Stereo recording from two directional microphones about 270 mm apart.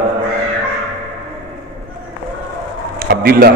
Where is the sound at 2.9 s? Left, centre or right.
Right.